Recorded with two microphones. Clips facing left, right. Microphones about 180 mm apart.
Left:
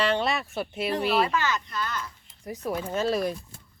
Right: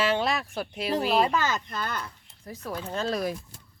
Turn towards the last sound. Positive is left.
turn(degrees=0)  # may be behind; listen again after turning